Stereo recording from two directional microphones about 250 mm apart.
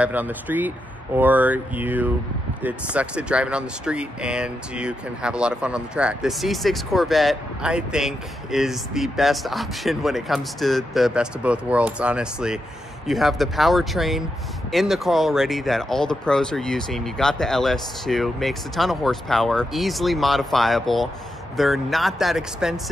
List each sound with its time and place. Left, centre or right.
0.0 s speech: centre